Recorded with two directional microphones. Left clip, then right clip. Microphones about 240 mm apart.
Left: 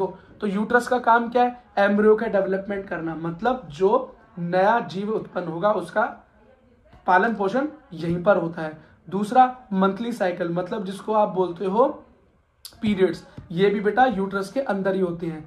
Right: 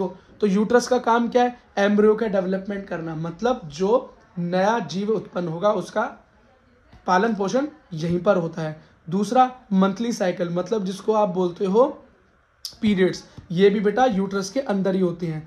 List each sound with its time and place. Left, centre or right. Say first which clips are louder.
0.0 s speech: right 3 dB; right
7.1 s speech: left 1 dB; right